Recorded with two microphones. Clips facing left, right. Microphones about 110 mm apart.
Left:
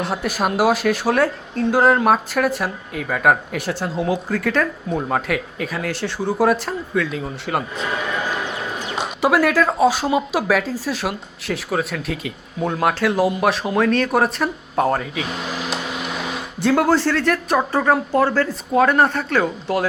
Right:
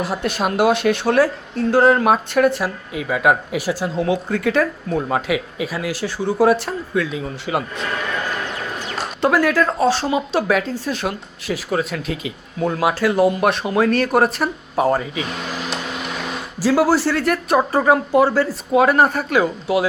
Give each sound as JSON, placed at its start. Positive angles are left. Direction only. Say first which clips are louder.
{"t": 0.0, "sound": "speech", "louder": "even", "side_deg": 0}